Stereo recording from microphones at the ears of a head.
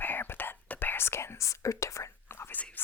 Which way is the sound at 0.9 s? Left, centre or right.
Left.